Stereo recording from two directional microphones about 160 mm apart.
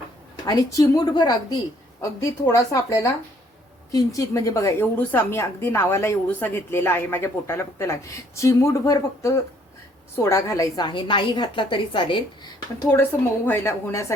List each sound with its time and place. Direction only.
0.4 s a woman's voice: 25° left (ahead or behind)
12.8 s a woman's voice: 15° left (ahead or behind)